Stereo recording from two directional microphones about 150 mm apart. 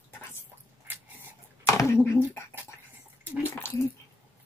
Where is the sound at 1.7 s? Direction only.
20° left (ahead or behind).